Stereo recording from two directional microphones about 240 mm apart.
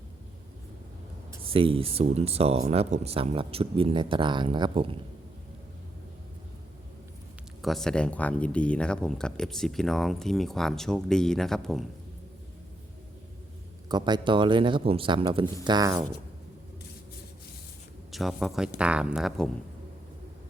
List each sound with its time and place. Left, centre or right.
1.5 s speech: right
7.6 s speech: centre
13.8 s speech: centre
18.1 s speech: centre